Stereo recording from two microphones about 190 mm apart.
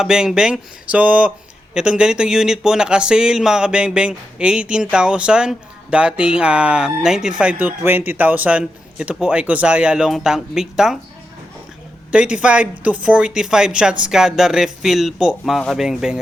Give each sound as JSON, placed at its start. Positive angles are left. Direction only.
{"t": 0.0, "sound": "speech", "side_deg": -5}
{"t": 12.1, "sound": "speech", "side_deg": -5}